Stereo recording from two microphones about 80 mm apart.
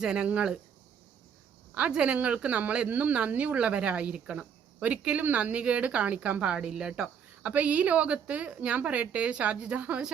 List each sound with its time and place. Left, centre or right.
0.0 s speech: centre
1.7 s speech: centre
7.4 s speech: centre